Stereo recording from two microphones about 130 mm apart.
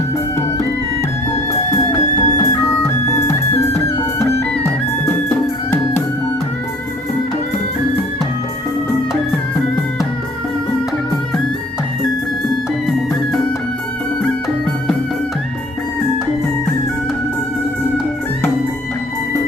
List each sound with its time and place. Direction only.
1.7 s music: 25° left (ahead or behind)